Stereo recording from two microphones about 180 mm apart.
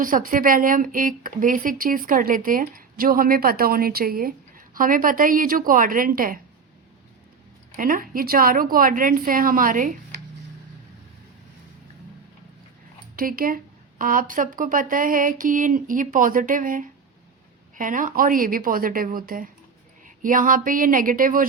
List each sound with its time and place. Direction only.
0.0 s speech: 50° right (ahead or behind)
7.8 s speech: 50° right (ahead or behind)
13.1 s speech: 50° right (ahead or behind)